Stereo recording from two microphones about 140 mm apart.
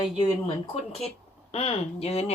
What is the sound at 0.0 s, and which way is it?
Speech, 45° left (ahead or behind).